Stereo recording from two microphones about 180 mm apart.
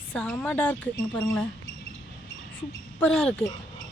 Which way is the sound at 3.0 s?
5° left (ahead or behind).